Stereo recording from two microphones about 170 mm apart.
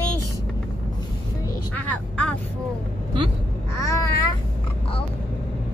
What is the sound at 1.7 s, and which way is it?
Vehicle, 10° left (ahead or behind).